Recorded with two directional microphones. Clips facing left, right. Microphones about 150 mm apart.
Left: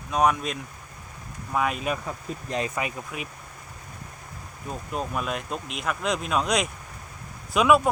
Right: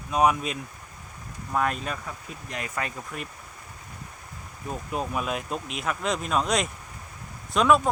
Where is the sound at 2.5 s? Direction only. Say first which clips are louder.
Left 7 dB; 25° left (ahead or behind).